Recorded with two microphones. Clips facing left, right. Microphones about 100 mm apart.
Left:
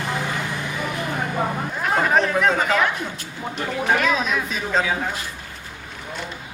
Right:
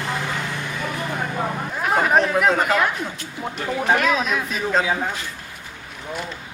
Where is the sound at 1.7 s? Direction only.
5° right (ahead or behind).